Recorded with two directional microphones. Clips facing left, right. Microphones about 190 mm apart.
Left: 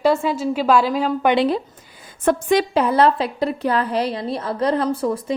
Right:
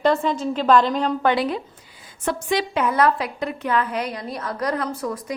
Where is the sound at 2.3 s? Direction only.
50° left (ahead or behind).